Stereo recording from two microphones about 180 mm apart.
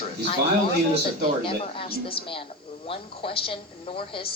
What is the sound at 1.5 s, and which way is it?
A woman's voice, 30° left (ahead or behind).